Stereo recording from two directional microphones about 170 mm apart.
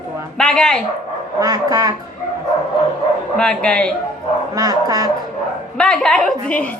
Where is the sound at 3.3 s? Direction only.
5° left (ahead or behind).